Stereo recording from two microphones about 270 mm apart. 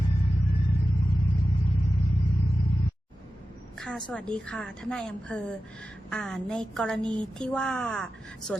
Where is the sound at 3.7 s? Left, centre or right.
Centre.